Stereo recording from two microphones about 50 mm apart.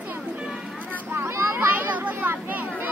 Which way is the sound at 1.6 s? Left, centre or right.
Right.